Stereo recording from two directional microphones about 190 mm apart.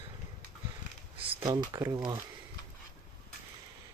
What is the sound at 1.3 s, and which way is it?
Speech, 25° right (ahead or behind).